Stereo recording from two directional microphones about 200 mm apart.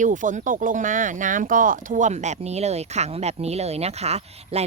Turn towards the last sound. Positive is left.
turn(degrees=-30)  # may be behind; listen again after turning